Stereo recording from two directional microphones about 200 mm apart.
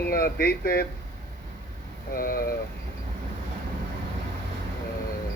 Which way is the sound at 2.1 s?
45° left (ahead or behind).